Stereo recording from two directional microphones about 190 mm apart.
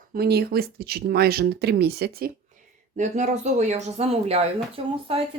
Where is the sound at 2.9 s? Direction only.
40° right (ahead or behind).